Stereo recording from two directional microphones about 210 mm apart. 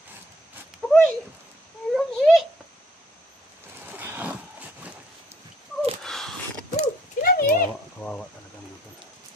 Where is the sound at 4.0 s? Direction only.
10° right (ahead or behind).